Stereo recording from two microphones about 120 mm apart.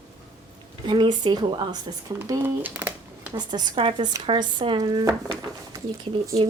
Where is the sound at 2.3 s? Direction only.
20° right (ahead or behind).